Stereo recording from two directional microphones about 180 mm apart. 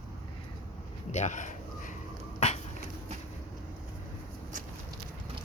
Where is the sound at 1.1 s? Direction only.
45° left (ahead or behind).